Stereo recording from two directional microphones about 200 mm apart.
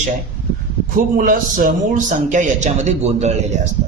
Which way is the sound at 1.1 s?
40° right (ahead or behind).